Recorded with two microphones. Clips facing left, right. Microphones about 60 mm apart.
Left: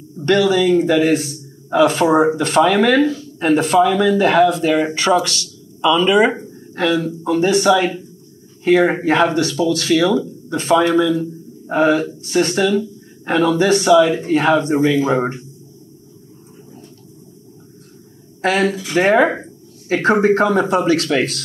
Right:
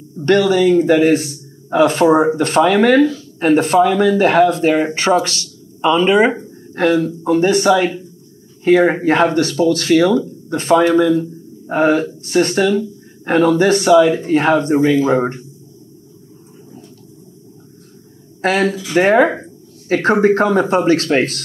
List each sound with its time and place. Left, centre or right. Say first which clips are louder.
0.2 s speech: right 2 dB; right
18.4 s speech: right 1 dB; right
18.7 s speech: right 1 dB; left
18.9 s speech: right 2 dB; right